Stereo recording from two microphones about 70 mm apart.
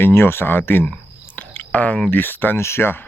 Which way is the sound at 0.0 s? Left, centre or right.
Left.